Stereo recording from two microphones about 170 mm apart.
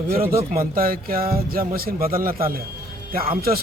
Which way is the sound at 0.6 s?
60° right (ahead or behind).